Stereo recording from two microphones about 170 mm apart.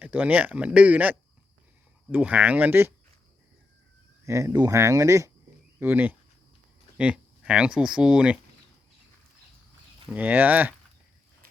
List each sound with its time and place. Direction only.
0.0 s speech: 10° right (ahead or behind)
4.3 s speech: 15° right (ahead or behind)
10.1 s speech: 10° right (ahead or behind)